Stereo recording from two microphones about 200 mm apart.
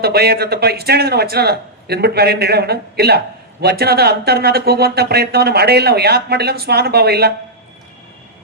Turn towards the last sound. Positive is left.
turn(degrees=-55)  # may be behind; listen again after turning